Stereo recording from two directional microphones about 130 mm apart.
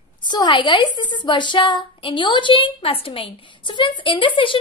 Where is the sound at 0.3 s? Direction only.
35° left (ahead or behind).